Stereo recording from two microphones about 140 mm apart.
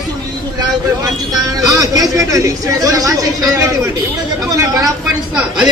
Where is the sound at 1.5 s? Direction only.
25° right (ahead or behind).